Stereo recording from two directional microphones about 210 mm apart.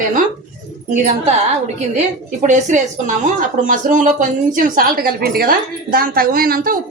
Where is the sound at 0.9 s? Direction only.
35° right (ahead or behind).